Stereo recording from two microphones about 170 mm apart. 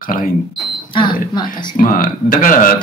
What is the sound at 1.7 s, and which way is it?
Speech, 55° left (ahead or behind).